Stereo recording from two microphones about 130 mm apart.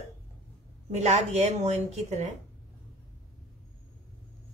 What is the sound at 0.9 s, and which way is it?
A woman's voice, 60° right (ahead or behind).